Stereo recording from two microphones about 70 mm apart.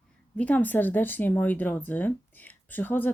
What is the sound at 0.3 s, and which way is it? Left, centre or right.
Speech, left.